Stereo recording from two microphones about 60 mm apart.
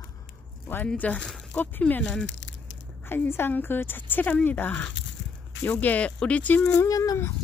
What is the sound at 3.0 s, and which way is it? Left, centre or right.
A woman's voice, left.